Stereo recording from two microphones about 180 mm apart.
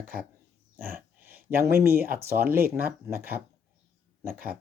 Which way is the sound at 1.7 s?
15° right (ahead or behind).